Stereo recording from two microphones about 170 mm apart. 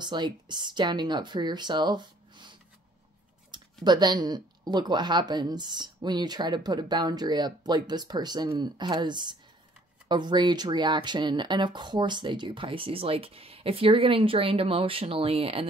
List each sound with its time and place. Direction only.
0.0 s speech: 25° right (ahead or behind)
3.8 s speech: 25° right (ahead or behind)